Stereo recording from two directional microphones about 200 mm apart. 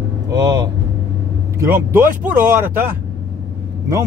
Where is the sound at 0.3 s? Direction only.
20° right (ahead or behind).